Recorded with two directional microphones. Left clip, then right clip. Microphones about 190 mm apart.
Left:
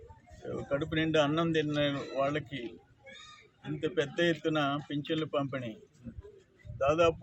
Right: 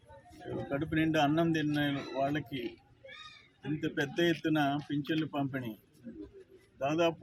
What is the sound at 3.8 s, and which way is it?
Speech, centre (ahead or behind).